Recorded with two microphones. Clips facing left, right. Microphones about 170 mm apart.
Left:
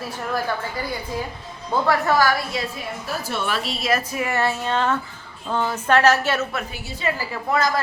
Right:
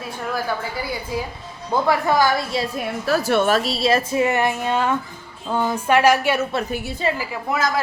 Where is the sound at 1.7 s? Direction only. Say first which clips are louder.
Right 1 dB; 15° right (ahead or behind).